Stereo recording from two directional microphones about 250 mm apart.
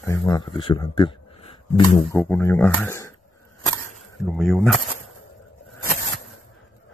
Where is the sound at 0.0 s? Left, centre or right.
Centre.